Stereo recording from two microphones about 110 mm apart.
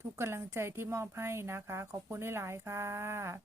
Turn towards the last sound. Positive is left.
turn(degrees=-25)  # may be behind; listen again after turning